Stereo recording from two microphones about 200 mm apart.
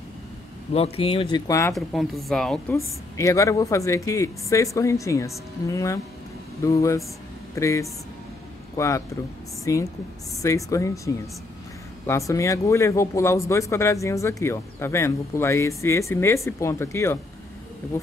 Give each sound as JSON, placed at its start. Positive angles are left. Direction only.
{"t": 0.7, "sound": "speech", "side_deg": 30}
{"t": 1.7, "sound": "a woman's voice", "side_deg": 0}
{"t": 3.2, "sound": "speech", "side_deg": 15}